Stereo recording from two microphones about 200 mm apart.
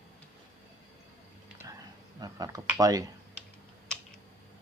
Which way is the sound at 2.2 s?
20° right (ahead or behind).